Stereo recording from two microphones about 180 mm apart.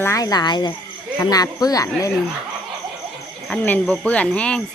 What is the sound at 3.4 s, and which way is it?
Speech, 5° left (ahead or behind).